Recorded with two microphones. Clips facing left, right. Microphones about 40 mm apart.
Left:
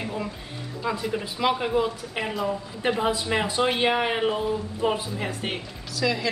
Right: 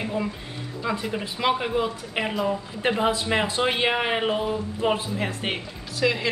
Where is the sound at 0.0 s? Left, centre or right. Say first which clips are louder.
Right 3 dB; centre.